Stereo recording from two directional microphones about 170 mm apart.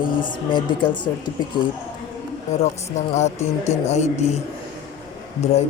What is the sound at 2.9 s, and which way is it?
A man's voice, 45° left (ahead or behind).